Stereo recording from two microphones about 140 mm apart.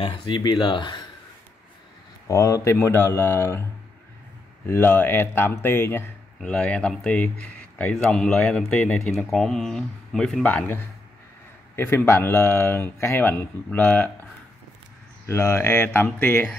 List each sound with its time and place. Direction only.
0.0 s speech: 40° left (ahead or behind)
0.4 s speech: 30° left (ahead or behind)
2.2 s speech: 20° left (ahead or behind)
4.6 s speech: 15° left (ahead or behind)
15.2 s speech: 20° left (ahead or behind)